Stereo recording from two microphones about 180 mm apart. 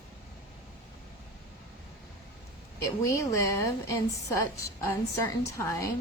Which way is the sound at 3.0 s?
15° left (ahead or behind).